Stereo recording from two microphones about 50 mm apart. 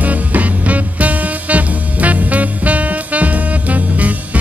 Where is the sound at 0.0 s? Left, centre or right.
Right.